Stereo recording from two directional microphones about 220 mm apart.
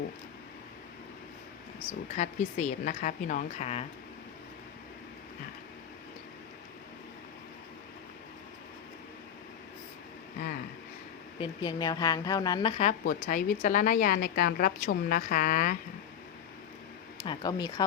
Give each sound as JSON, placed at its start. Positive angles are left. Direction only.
{"t": 2.1, "sound": "speech", "side_deg": 35}
{"t": 11.3, "sound": "speech", "side_deg": 20}
{"t": 17.2, "sound": "speech", "side_deg": 20}